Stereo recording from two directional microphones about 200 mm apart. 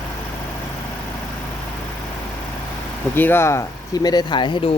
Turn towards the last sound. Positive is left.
turn(degrees=25)  # may be behind; listen again after turning